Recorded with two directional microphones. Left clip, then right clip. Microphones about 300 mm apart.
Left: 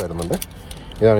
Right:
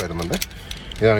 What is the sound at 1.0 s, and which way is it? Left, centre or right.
Speech, centre.